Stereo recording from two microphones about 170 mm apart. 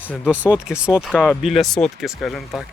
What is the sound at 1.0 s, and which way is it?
Speech, 5° left (ahead or behind).